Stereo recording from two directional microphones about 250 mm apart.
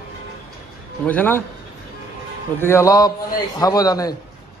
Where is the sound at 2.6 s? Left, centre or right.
Centre.